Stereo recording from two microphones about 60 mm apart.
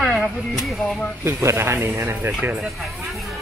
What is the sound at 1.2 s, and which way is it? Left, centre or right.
Speech, right.